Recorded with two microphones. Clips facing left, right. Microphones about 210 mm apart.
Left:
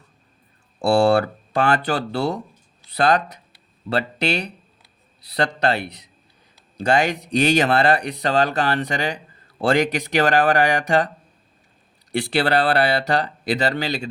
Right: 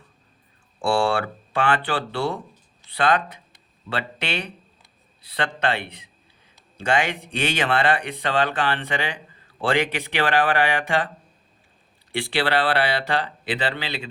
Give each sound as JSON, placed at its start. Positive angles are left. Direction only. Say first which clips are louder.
{"t": 0.8, "sound": "speech", "louder": "left 5 dB", "side_deg": 40}
{"t": 12.1, "sound": "speech", "louder": "left 3 dB", "side_deg": 40}